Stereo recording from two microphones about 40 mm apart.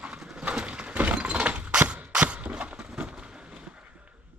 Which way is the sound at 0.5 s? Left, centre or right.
Right.